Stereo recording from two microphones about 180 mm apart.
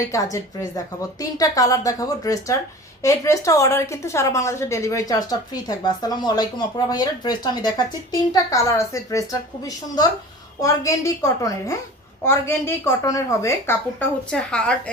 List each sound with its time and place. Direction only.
0.0 s a woman's voice: 20° left (ahead or behind)
14.3 s a woman's voice: 5° left (ahead or behind)